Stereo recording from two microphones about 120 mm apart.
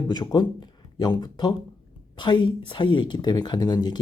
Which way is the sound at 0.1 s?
35° left (ahead or behind).